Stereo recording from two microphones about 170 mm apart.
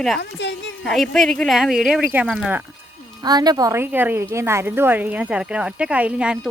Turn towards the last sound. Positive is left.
turn(degrees=-5)  # may be behind; listen again after turning